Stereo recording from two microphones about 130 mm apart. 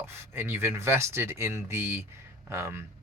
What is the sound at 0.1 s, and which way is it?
Speech, 20° right (ahead or behind).